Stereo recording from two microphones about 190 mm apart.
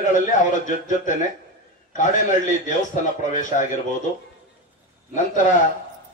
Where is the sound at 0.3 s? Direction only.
40° left (ahead or behind).